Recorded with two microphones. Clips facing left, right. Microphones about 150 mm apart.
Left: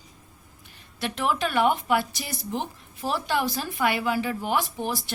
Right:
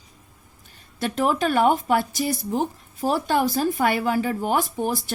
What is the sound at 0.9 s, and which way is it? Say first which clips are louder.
Speech: right 4 dB; 45° right (ahead or behind).